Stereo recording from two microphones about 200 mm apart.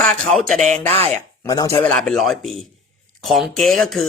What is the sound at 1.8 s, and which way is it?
Speech, 5° left (ahead or behind).